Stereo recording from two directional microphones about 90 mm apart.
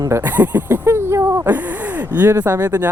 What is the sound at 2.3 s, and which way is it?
Speech, 30° right (ahead or behind).